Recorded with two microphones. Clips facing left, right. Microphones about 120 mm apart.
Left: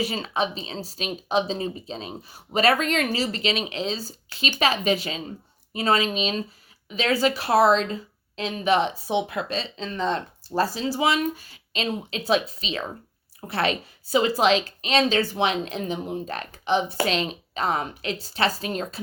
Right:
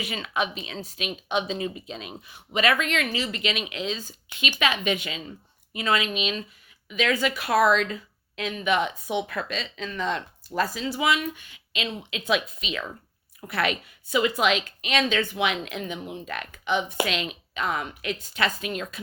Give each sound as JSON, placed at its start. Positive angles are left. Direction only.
{"t": 0.0, "sound": "speech", "side_deg": 35}
{"t": 9.1, "sound": "a woman's voice", "side_deg": 20}
{"t": 9.5, "sound": "speech", "side_deg": 30}